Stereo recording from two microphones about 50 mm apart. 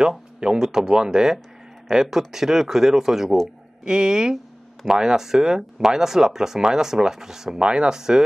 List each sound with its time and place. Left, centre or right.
0.0 s speech: centre